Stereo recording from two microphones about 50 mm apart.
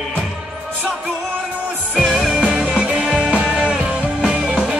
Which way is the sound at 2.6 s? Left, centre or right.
Centre.